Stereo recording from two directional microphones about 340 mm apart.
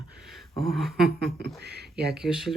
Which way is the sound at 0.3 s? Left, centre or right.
Centre.